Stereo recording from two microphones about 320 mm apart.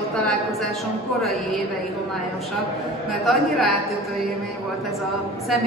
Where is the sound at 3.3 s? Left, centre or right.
Centre.